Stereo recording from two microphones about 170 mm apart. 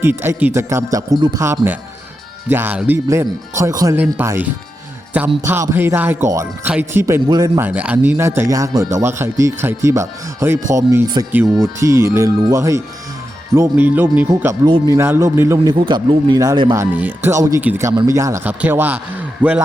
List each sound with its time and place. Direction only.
0.0 s speech: 15° right (ahead or behind)
14.3 s speech: 20° right (ahead or behind)
15.5 s speech: 30° right (ahead or behind); by 19.6 s 10° right (ahead or behind)